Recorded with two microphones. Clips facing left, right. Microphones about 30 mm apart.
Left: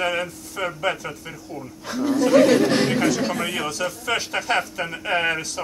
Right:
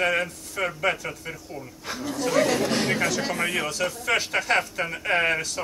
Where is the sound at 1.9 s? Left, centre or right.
Centre.